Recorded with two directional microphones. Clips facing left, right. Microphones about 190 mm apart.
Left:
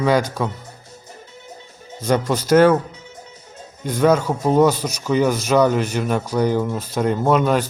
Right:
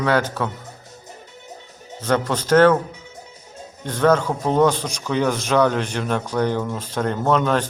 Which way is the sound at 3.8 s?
10° left (ahead or behind).